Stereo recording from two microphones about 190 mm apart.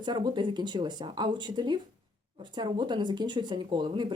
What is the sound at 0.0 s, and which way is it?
Speech, 25° right (ahead or behind).